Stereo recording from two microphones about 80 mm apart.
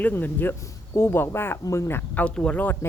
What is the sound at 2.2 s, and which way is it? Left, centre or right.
Speech, centre.